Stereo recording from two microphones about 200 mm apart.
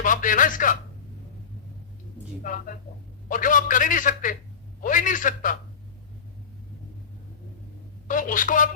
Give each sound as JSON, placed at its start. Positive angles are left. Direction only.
{"t": 0.0, "sound": "speech", "side_deg": 40}
{"t": 2.4, "sound": "a man's voice", "side_deg": 40}
{"t": 8.0, "sound": "a man's voice", "side_deg": 40}